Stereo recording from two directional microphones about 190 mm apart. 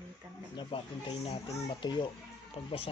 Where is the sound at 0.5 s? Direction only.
30° left (ahead or behind).